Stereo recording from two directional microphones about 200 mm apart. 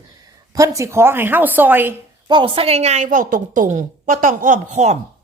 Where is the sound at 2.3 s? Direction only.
25° right (ahead or behind).